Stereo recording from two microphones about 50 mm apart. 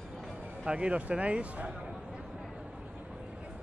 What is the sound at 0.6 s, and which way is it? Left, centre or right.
Speech, right.